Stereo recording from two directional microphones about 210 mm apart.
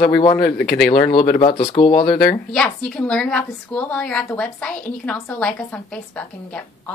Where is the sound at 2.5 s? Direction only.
5° left (ahead or behind).